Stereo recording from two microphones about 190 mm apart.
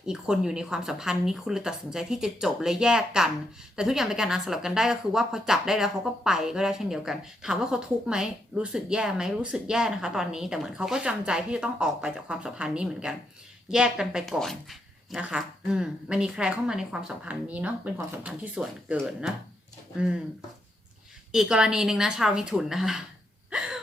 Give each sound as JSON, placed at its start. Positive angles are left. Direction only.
{"t": 0.0, "sound": "speech", "side_deg": -5}
{"t": 21.3, "sound": "speech", "side_deg": -5}
{"t": 23.5, "sound": "a sound", "side_deg": -5}